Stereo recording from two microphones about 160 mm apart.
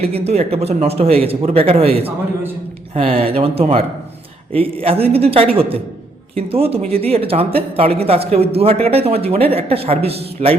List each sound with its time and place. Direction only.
0.1 s speech: 40° right (ahead or behind)